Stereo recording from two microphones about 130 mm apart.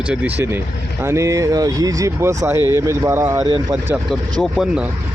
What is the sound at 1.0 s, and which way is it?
Speech, 20° right (ahead or behind).